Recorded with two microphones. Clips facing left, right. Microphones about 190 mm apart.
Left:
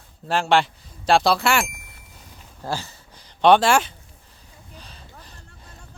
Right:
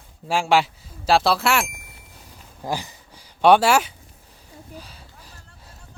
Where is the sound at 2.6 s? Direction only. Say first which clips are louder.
Right 1 dB; 15° right (ahead or behind).